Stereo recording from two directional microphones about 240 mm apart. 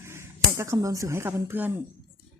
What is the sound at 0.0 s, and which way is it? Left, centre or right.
Speech, centre.